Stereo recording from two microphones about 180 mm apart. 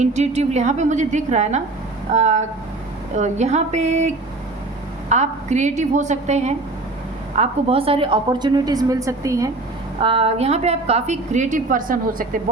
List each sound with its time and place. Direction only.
0.0 s a woman's voice: 40° right (ahead or behind); by 9.5 s 15° right (ahead or behind)
10.0 s a woman's voice: 30° right (ahead or behind); by 12.4 s 50° right (ahead or behind)